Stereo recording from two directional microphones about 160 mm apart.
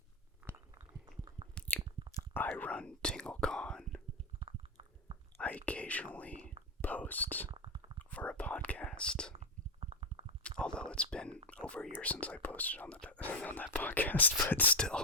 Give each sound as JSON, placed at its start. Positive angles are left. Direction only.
{"t": 0.4, "sound": "a sound", "side_deg": -15}
{"t": 1.5, "sound": "chewing", "side_deg": 10}
{"t": 2.3, "sound": "whispering", "side_deg": 10}
{"t": 4.4, "sound": "stomach rumble", "side_deg": -30}
{"t": 5.4, "sound": "speech", "side_deg": 10}
{"t": 6.8, "sound": "whispering", "side_deg": 10}
{"t": 7.5, "sound": "a sound", "side_deg": -30}
{"t": 8.1, "sound": "whispering", "side_deg": 10}
{"t": 9.3, "sound": "sneeze", "side_deg": -35}
{"t": 10.6, "sound": "speech", "side_deg": 5}